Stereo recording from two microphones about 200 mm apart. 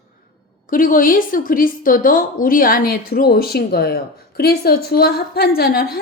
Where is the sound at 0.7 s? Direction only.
45° left (ahead or behind).